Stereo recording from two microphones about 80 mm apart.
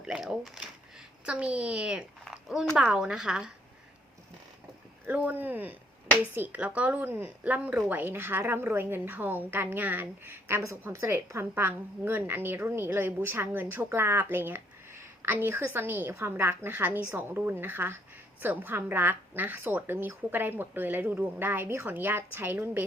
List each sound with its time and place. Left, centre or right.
0.0 s a woman's voice: centre
2.2 s a sound: centre
2.8 s a woman's voice: centre
5.0 s a woman's voice: right
10.6 s a woman's voice: right